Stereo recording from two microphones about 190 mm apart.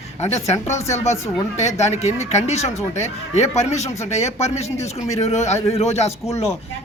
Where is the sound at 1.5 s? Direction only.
35° left (ahead or behind).